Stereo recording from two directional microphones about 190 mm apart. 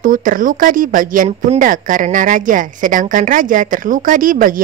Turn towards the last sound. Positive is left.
turn(degrees=-45)  # may be behind; listen again after turning